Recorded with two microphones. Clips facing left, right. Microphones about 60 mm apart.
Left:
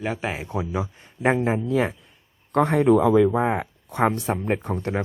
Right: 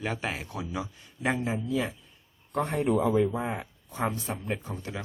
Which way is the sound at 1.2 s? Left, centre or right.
Left.